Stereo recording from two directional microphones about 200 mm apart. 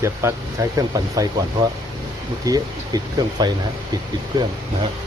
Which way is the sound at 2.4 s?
20° right (ahead or behind).